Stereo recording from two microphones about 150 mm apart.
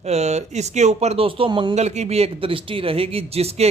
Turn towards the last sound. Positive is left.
turn(degrees=-45)  # may be behind; listen again after turning